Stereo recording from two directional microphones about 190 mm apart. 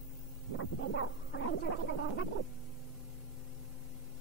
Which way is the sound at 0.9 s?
70° left (ahead or behind).